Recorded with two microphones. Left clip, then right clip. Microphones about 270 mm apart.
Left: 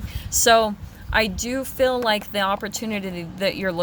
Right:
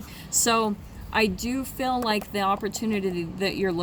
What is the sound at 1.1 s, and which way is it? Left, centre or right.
Speech, left.